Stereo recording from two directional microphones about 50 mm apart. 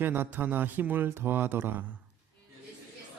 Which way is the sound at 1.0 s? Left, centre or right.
Right.